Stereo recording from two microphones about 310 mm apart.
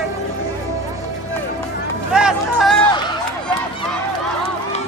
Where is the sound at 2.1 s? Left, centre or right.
Centre.